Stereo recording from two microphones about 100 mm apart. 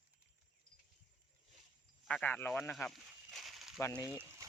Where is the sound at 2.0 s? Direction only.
10° left (ahead or behind).